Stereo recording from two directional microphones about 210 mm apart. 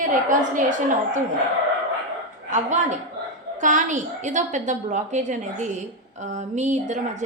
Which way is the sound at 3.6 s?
35° right (ahead or behind).